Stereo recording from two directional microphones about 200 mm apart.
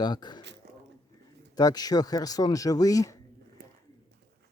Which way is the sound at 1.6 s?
20° left (ahead or behind).